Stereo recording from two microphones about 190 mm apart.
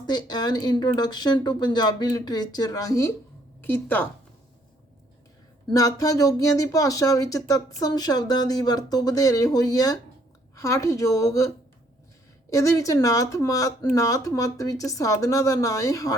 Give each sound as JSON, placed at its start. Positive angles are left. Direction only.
{"t": 0.1, "sound": "speech", "side_deg": 20}
{"t": 5.6, "sound": "speech", "side_deg": 20}